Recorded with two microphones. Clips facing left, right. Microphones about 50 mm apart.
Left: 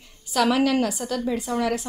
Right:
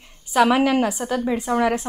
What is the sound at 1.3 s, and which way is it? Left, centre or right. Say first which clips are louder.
Speech: right 6 dB; right.